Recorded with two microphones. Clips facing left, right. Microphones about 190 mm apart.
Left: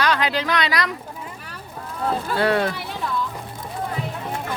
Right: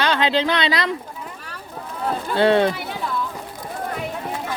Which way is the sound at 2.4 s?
25° right (ahead or behind).